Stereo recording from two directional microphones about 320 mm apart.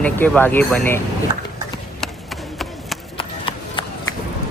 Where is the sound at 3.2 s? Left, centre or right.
Centre.